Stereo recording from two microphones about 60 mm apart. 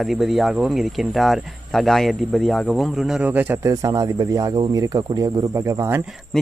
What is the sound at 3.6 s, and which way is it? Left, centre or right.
Speech, right.